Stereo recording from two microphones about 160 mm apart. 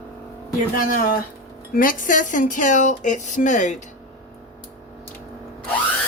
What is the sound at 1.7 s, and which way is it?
Speech, 60° left (ahead or behind).